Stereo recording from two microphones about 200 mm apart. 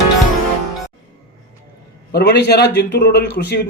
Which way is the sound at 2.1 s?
50° left (ahead or behind).